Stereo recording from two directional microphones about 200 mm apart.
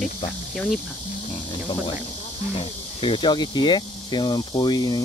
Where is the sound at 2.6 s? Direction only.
25° left (ahead or behind).